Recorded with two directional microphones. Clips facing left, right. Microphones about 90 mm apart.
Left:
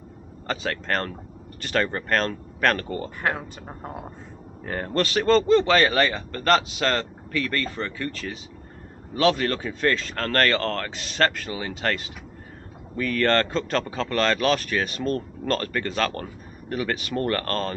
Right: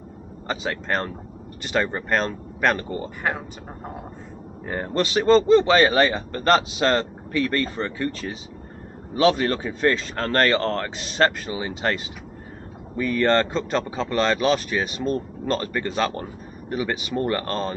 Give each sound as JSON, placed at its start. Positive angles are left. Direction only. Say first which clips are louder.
{"t": 0.5, "sound": "speech", "louder": "right 1 dB", "side_deg": -15}
{"t": 3.2, "sound": "speech", "louder": "left 1 dB", "side_deg": -5}
{"t": 4.6, "sound": "speech", "louder": "right 1 dB", "side_deg": -15}